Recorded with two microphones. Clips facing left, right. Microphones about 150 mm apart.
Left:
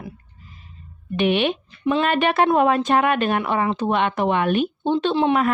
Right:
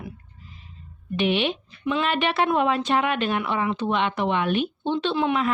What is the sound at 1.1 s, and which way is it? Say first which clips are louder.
Speech: left 3 dB; 50° left (ahead or behind).